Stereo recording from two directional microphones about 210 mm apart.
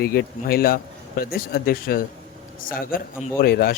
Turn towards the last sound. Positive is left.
turn(degrees=45)  # may be behind; listen again after turning